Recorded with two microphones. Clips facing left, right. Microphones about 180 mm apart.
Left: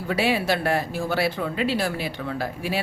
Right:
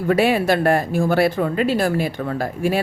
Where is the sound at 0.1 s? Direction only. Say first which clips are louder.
Right 6 dB; 50° right (ahead or behind).